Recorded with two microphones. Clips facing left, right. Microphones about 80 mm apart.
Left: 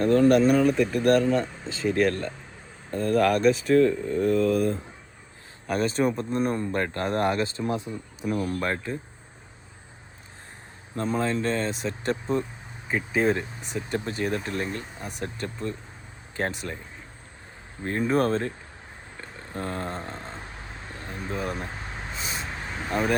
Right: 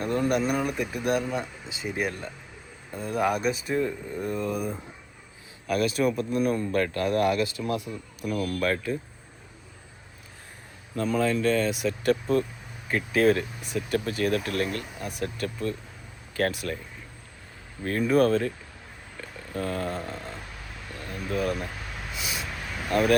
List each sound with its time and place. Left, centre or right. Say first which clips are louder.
0.0 s speech: left 7 dB; centre
5.6 s speech: even; left
10.9 s speech: right 1 dB; left
17.8 s speech: right 2 dB; left
19.1 s a sound: right 2 dB; left
22.9 s speech: right 3 dB; left